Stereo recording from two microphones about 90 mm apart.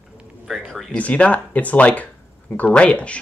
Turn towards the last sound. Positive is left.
turn(degrees=15)  # may be behind; listen again after turning